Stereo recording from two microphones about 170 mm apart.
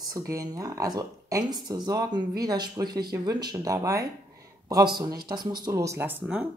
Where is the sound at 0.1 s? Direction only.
20° right (ahead or behind).